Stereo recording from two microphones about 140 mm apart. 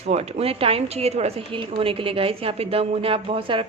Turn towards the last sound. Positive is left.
turn(degrees=-40)  # may be behind; listen again after turning